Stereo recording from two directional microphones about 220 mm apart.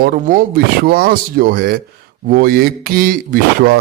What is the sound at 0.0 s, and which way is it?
Speech, 40° right (ahead or behind).